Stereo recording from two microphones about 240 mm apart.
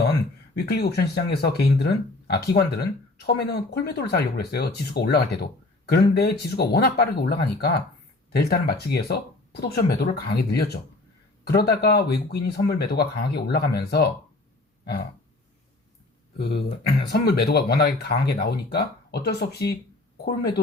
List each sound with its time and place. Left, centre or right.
0.5 s speech: left
16.8 s speech: left